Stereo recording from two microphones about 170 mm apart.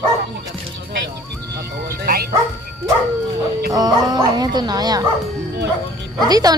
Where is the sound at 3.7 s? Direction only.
25° right (ahead or behind).